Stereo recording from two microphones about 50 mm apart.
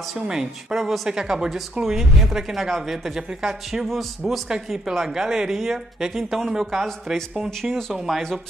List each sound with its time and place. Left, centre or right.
0.1 s a woman's voice: centre